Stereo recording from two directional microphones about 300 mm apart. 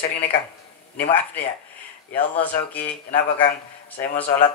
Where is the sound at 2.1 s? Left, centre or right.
Centre.